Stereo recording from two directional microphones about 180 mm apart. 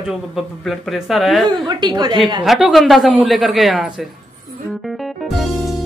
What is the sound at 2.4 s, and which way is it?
Speech, centre (ahead or behind).